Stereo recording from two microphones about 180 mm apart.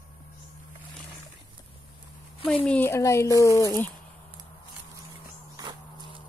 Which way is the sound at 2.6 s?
10° left (ahead or behind).